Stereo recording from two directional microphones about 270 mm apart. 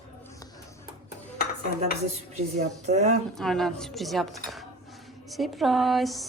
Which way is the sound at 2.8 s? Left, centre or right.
Right.